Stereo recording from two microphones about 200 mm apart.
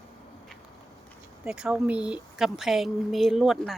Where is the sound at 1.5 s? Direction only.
5° right (ahead or behind).